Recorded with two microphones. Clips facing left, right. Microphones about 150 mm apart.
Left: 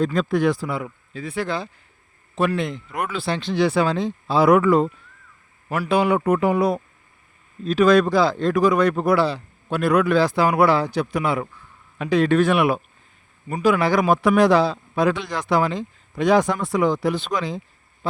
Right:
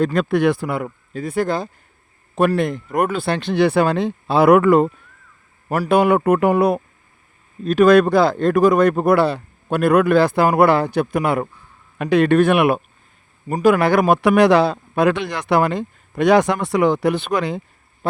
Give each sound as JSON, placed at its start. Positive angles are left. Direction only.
{"t": 0.0, "sound": "speech", "side_deg": -70}
{"t": 0.9, "sound": "speech", "side_deg": -45}
{"t": 5.6, "sound": "speech", "side_deg": -45}
{"t": 18.0, "sound": "a sound", "side_deg": -55}